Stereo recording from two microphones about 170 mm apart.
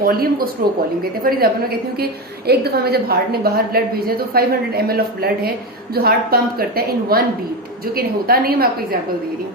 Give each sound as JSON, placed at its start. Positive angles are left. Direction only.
{"t": 0.0, "sound": "a woman's voice", "side_deg": -60}
{"t": 2.5, "sound": "a woman's voice", "side_deg": -70}